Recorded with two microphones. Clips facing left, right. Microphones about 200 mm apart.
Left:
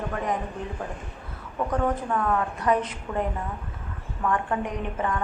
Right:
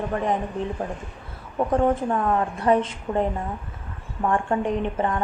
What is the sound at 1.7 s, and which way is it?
A woman's voice, 25° right (ahead or behind).